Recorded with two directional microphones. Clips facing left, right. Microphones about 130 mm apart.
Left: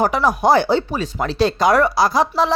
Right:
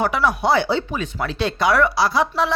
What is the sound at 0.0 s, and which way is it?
Speech, 40° left (ahead or behind).